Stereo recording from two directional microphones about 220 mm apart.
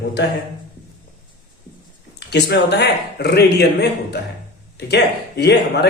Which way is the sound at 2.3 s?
50° left (ahead or behind).